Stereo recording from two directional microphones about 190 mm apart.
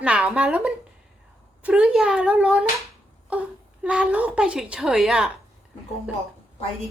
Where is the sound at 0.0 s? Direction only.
5° right (ahead or behind).